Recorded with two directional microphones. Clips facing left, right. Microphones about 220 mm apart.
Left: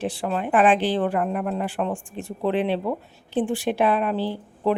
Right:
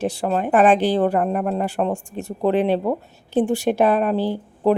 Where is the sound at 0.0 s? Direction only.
40° right (ahead or behind).